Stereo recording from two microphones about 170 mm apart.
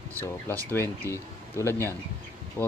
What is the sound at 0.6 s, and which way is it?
Speech, 15° left (ahead or behind).